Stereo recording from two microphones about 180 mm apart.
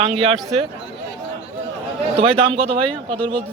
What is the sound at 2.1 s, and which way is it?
Speech, 35° right (ahead or behind).